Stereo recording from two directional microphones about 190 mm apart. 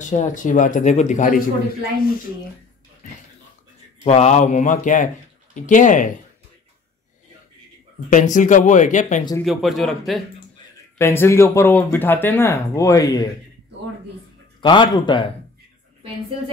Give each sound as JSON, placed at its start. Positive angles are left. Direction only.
{"t": 0.0, "sound": "speech", "side_deg": 40}
{"t": 4.0, "sound": "speech", "side_deg": 35}
{"t": 8.1, "sound": "speech", "side_deg": 40}
{"t": 9.4, "sound": "a man's voice", "side_deg": 0}
{"t": 11.0, "sound": "speech", "side_deg": 15}
{"t": 14.6, "sound": "a man's voice", "side_deg": 25}